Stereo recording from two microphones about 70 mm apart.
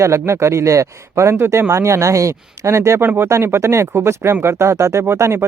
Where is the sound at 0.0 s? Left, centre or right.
Right.